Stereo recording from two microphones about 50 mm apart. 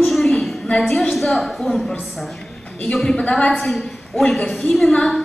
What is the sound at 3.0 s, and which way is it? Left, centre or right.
Speech, centre.